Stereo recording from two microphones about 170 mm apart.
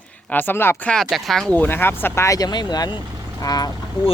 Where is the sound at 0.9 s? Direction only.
Centre (ahead or behind); by 3.7 s 20° left (ahead or behind).